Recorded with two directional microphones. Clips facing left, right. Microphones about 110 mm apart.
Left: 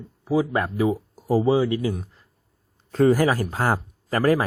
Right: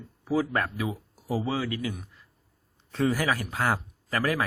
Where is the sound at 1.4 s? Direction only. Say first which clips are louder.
Left 11 dB; 25° left (ahead or behind).